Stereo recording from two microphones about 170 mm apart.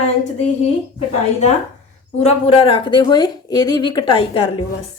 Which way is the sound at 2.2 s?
35° left (ahead or behind).